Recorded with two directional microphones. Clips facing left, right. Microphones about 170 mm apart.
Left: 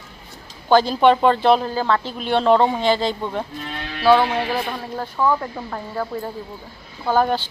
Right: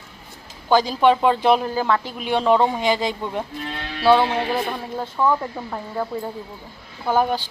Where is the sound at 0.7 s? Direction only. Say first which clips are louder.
Left 2 dB; 10° right (ahead or behind).